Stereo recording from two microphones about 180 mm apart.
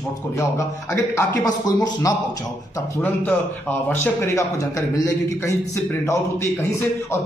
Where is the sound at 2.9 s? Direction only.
10° left (ahead or behind).